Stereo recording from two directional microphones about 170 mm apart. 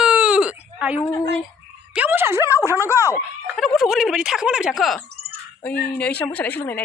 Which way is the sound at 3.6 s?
Centre (ahead or behind).